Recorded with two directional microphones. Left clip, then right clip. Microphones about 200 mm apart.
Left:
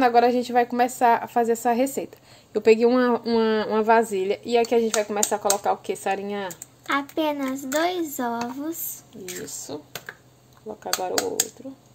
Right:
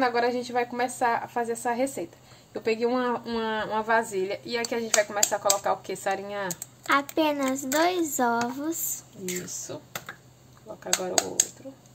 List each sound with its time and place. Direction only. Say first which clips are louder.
0.0 s a woman's voice: left 6 dB; 45° left (ahead or behind)
6.9 s a child's voice: right 1 dB; 5° right (ahead or behind)